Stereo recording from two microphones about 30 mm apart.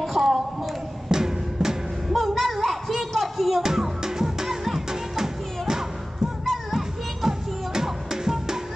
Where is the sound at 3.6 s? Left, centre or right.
Centre.